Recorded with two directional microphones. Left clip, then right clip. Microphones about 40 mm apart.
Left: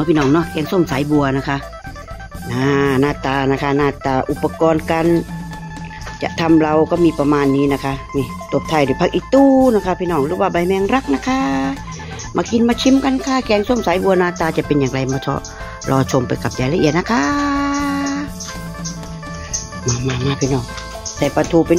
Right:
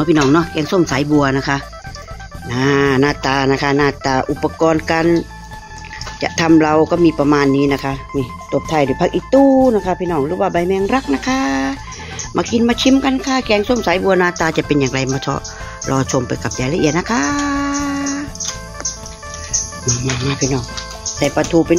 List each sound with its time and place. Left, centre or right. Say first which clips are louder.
0.0 s speech: right 2 dB; centre
4.0 s speech: right 1 dB; centre
6.2 s speech: right 2 dB; centre; by 15.9 s left
15.9 s speech: left 1 dB; left
16.3 s speech: even; left
19.9 s speech: even; left
21.4 s speech: left 1 dB; left